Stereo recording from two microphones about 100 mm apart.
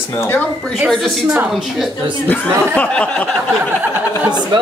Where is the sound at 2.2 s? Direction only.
15° left (ahead or behind).